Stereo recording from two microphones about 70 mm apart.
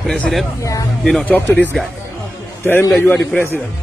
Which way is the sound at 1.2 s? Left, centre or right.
Left.